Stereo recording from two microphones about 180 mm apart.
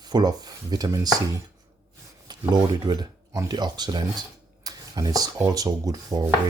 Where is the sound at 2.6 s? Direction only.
20° right (ahead or behind).